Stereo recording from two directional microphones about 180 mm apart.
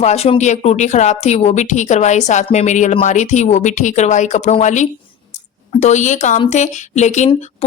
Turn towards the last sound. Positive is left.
turn(degrees=40)  # may be behind; listen again after turning